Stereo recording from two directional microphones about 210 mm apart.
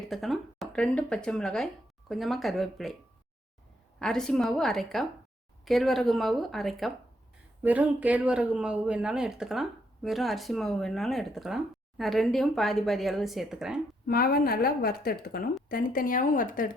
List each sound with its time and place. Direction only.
0.1 s speech: centre (ahead or behind)
4.0 s speech: 5° left (ahead or behind)
14.1 s a woman's voice: 45° left (ahead or behind)